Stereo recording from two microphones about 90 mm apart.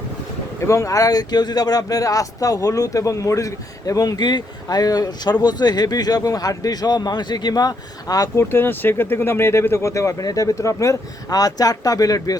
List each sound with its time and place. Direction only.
0.6 s speech: 35° left (ahead or behind)
8.4 s speech: 25° left (ahead or behind); by 12.4 s 45° left (ahead or behind)